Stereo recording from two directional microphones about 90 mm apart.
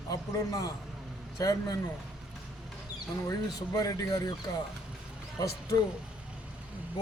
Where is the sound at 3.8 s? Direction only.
40° left (ahead or behind).